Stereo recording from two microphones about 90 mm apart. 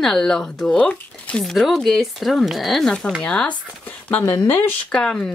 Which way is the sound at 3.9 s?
20° left (ahead or behind).